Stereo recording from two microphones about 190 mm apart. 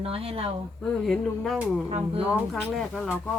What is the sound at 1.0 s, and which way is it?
A woman's voice, centre (ahead or behind).